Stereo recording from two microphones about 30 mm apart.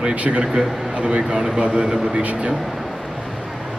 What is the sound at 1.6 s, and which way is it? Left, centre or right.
Speech, right.